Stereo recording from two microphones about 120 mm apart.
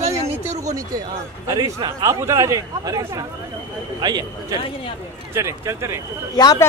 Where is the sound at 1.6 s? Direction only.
30° right (ahead or behind).